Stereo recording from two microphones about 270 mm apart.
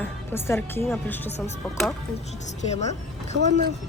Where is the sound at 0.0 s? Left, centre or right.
Centre.